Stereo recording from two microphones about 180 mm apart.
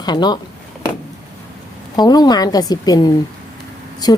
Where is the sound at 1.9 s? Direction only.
20° left (ahead or behind).